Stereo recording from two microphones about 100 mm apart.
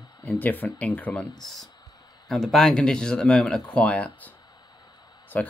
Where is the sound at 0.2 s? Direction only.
15° left (ahead or behind).